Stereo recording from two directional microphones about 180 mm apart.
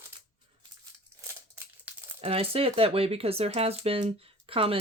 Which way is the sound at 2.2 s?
35° right (ahead or behind).